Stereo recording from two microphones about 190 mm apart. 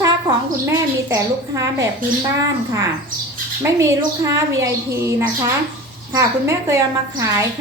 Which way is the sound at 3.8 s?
15° right (ahead or behind).